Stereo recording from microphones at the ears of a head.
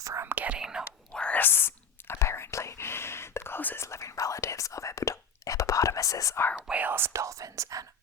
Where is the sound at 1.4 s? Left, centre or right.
Left.